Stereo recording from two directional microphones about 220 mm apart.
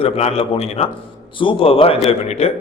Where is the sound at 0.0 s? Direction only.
25° left (ahead or behind).